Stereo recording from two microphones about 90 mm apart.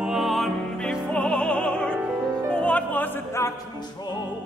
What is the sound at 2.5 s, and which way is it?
Opera, 15° left (ahead or behind).